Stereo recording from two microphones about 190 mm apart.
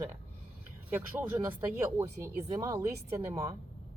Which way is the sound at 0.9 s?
10° right (ahead or behind).